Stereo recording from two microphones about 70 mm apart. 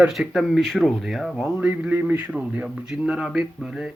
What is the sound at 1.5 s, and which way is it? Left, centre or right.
A man's voice, centre.